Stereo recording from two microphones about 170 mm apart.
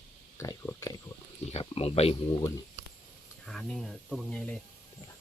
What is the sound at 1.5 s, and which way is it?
Speech, 35° left (ahead or behind).